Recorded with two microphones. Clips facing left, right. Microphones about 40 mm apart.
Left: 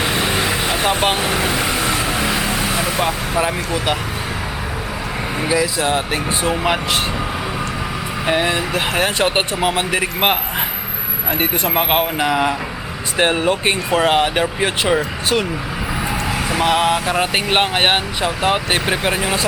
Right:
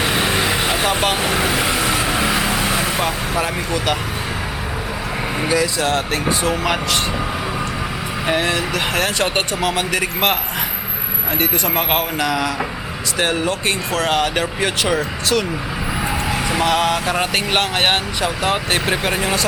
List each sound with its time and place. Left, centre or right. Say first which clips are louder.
0.0 s vehicle: even; centre
5.5 s speech: left 1 dB; centre
8.3 s speech: left 1 dB; centre
11.3 s speech: left 1 dB; centre
16.3 s vehicle: even; centre
16.6 s speech: left 2 dB; centre